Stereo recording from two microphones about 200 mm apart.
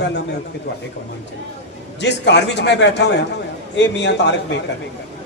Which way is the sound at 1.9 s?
60° left (ahead or behind).